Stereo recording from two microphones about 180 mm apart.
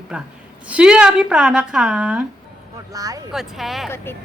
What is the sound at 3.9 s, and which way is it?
Speech, 15° left (ahead or behind).